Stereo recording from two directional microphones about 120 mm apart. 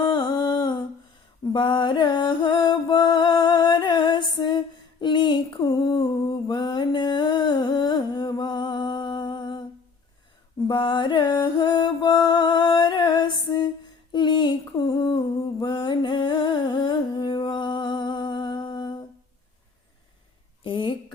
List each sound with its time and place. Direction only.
0.0 s humming: 35° left (ahead or behind)
1.5 s music: 40° left (ahead or behind)
10.7 s music: 40° left (ahead or behind)
14.1 s humming: 40° left (ahead or behind)
20.7 s a sound: 45° left (ahead or behind)